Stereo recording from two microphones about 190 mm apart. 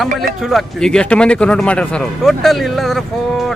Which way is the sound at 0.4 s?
Centre (ahead or behind).